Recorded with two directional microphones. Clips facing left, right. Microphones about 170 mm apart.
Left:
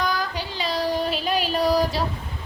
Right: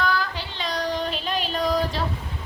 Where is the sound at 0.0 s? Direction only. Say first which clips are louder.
Even; 15° left (ahead or behind).